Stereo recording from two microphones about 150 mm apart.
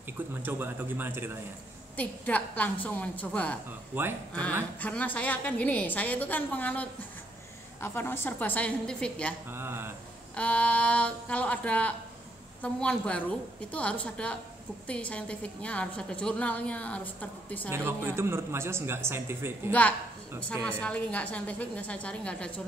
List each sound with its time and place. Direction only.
0.3 s speech: 15° right (ahead or behind)
2.0 s a woman's voice: 10° left (ahead or behind)
3.9 s speech: 15° right (ahead or behind)
4.3 s a woman's voice: 10° left (ahead or behind)
9.5 s speech: 15° right (ahead or behind)
10.3 s a woman's voice: 10° left (ahead or behind)
17.6 s speech: 15° right (ahead or behind)
20.6 s a woman's voice: 5° left (ahead or behind)